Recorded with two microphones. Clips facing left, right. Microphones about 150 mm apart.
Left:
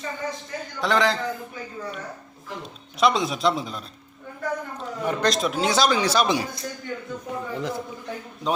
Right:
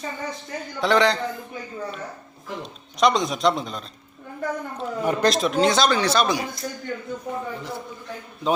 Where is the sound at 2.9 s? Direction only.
5° left (ahead or behind).